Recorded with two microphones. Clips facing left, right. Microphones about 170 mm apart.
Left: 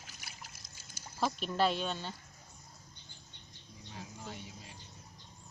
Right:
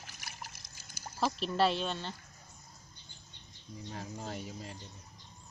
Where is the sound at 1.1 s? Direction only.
Centre (ahead or behind).